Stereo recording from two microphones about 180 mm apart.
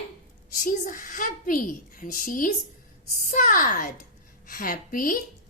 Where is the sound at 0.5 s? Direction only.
45° left (ahead or behind).